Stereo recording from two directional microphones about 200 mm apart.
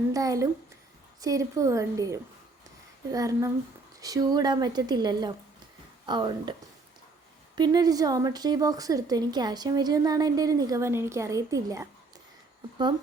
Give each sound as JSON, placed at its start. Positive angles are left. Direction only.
{"t": 0.1, "sound": "a woman's voice", "side_deg": -15}
{"t": 7.5, "sound": "a woman's voice", "side_deg": -20}